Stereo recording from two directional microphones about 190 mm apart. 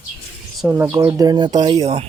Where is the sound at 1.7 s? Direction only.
35° right (ahead or behind).